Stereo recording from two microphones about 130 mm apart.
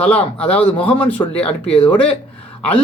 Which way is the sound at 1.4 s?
10° left (ahead or behind).